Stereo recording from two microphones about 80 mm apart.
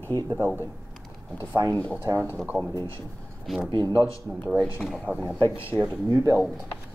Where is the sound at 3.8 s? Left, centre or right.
Left.